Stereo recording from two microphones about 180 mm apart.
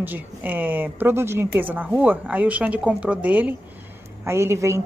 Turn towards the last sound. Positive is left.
turn(degrees=-15)  # may be behind; listen again after turning